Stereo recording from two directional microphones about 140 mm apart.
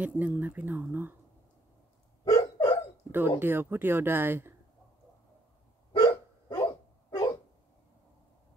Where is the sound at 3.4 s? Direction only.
15° right (ahead or behind).